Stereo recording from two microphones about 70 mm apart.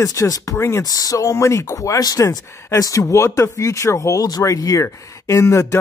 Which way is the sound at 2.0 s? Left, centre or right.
Left.